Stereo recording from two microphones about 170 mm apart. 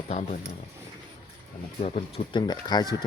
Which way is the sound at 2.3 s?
25° left (ahead or behind).